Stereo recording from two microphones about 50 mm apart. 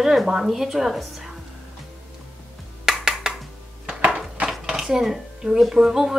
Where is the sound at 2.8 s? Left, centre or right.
Centre.